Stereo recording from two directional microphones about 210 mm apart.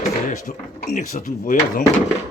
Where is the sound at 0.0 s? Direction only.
35° left (ahead or behind).